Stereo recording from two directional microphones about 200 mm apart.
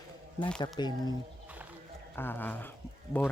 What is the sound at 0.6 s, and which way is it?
Speech, 20° left (ahead or behind).